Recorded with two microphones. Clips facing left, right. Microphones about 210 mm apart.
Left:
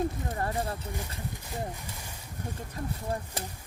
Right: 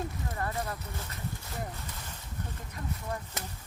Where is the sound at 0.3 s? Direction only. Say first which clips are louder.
Left 3 dB; 30° left (ahead or behind).